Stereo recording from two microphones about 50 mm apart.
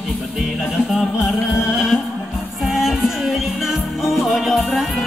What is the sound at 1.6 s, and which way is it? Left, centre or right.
Music, centre.